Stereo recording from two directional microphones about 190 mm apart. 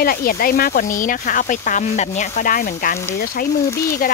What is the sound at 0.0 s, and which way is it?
Speech, 50° left (ahead or behind).